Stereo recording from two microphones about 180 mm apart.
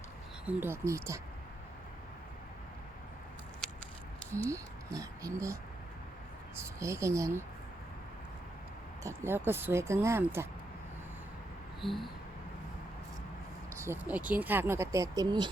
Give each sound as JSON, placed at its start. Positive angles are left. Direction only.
{"t": 0.4, "sound": "speech", "side_deg": -10}
{"t": 4.4, "sound": "speech", "side_deg": -20}
{"t": 6.6, "sound": "speech", "side_deg": -15}
{"t": 9.0, "sound": "speech", "side_deg": -10}
{"t": 11.8, "sound": "speech", "side_deg": 0}
{"t": 13.7, "sound": "speech", "side_deg": -15}